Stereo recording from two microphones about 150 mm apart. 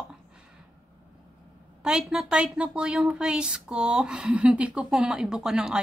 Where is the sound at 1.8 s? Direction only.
5° right (ahead or behind).